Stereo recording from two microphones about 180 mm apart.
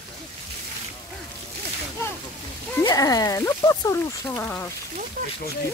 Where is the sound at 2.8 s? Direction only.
20° left (ahead or behind).